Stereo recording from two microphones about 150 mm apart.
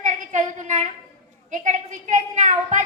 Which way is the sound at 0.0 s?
55° right (ahead or behind).